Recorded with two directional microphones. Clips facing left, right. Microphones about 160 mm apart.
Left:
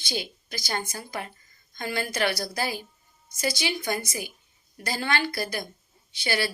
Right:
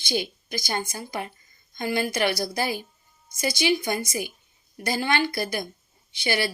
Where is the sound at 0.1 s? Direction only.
15° right (ahead or behind).